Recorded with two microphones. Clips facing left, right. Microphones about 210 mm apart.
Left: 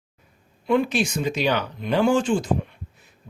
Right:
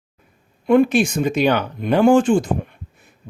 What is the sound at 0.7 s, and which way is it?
Speech, 50° right (ahead or behind).